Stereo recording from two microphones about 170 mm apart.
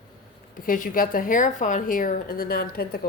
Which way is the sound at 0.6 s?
55° left (ahead or behind).